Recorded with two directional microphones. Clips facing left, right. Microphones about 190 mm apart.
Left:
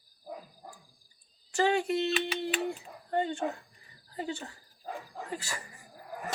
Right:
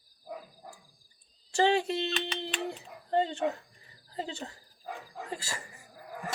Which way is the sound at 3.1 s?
20° right (ahead or behind).